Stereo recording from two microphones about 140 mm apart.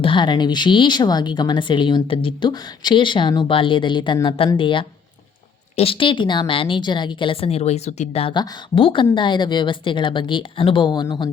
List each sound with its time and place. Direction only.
0.0 s speech: 35° left (ahead or behind)
8.3 s speech: 35° left (ahead or behind)